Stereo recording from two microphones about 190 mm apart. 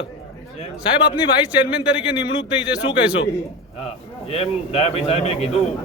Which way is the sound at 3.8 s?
30° left (ahead or behind).